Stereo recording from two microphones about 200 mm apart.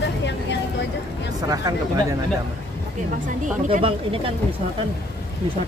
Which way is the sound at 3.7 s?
25° right (ahead or behind).